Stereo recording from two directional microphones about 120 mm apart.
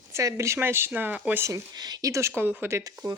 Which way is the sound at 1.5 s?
35° right (ahead or behind).